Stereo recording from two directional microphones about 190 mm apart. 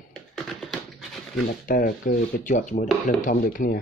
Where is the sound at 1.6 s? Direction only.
45° left (ahead or behind).